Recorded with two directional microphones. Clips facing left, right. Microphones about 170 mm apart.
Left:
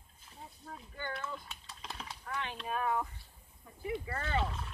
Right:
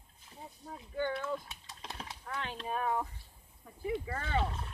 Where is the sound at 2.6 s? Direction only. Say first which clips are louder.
Even; 25° right (ahead or behind).